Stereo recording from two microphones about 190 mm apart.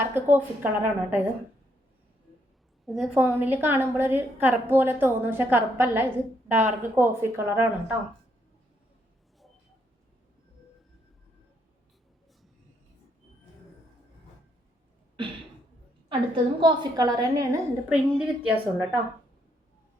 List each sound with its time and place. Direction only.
0.0 s a woman's voice: 10° right (ahead or behind)
2.8 s a woman's voice: centre (ahead or behind)
3.2 s a woman's voice: 10° right (ahead or behind)
16.0 s a woman's voice: 25° right (ahead or behind)
17.8 s a woman's voice: 5° right (ahead or behind)